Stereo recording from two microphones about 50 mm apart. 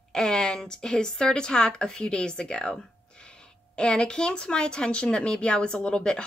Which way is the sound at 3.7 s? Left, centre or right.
Centre.